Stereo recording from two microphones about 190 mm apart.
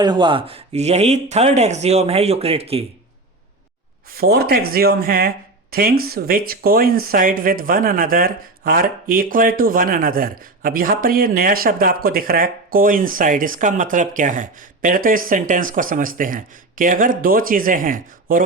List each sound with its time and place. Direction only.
0.0 s speech: 25° right (ahead or behind)
4.2 s speech: 55° right (ahead or behind)